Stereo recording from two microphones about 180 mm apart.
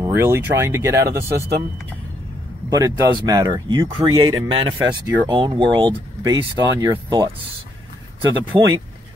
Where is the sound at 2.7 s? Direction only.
20° right (ahead or behind).